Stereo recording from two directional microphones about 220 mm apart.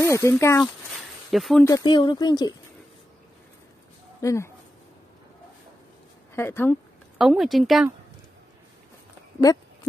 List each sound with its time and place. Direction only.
0.0 s speech: 10° left (ahead or behind)
1.3 s speech: centre (ahead or behind)
1.6 s speech: 15° left (ahead or behind)
4.2 s speech: 15° left (ahead or behind)
6.3 s speech: 10° left (ahead or behind)
7.2 s speech: centre (ahead or behind)
9.5 s speech: 15° left (ahead or behind)